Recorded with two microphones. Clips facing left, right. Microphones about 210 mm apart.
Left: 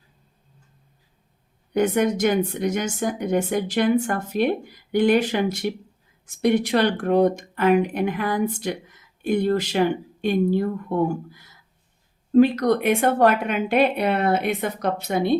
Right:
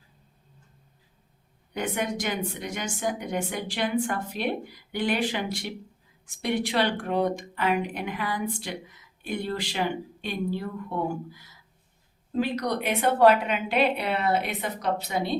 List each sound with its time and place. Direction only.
1.7 s speech: 45° left (ahead or behind)
12.3 s speech: 55° left (ahead or behind)